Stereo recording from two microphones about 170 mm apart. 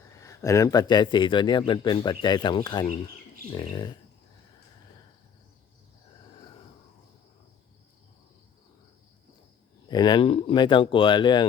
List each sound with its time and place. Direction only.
0.2 s a man's voice: 20° left (ahead or behind)
9.9 s a man's voice: 25° left (ahead or behind)